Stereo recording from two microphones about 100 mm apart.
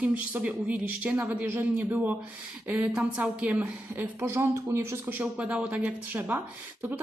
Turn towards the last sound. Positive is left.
turn(degrees=-20)  # may be behind; listen again after turning